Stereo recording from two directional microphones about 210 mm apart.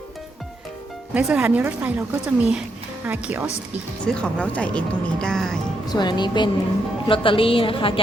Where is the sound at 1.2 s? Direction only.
5° right (ahead or behind).